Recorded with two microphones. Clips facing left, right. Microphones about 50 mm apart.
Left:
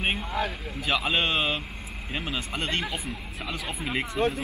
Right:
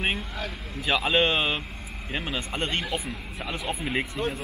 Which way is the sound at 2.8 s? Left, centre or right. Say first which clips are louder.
Right 1 dB; centre.